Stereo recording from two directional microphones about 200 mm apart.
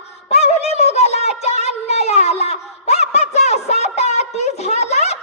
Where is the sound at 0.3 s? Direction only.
30° left (ahead or behind).